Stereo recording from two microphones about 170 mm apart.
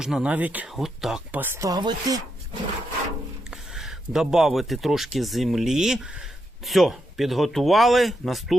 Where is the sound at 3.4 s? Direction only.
5° right (ahead or behind).